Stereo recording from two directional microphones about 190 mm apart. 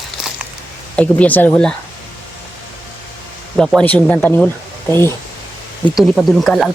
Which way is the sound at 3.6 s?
5° left (ahead or behind).